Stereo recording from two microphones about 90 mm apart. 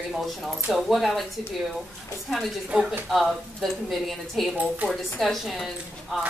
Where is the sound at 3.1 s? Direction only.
Centre (ahead or behind).